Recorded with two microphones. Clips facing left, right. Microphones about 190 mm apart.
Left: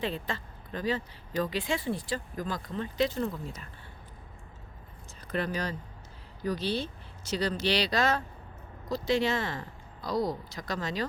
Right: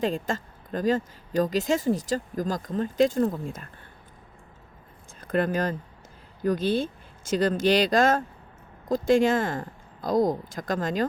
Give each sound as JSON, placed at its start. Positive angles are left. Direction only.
{"t": 0.0, "sound": "speech", "side_deg": -45}
{"t": 5.3, "sound": "speech", "side_deg": -50}